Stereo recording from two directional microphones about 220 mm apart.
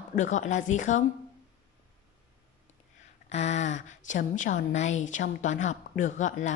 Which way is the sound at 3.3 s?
30° left (ahead or behind).